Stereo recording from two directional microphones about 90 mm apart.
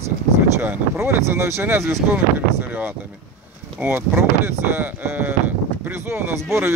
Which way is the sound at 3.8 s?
25° right (ahead or behind).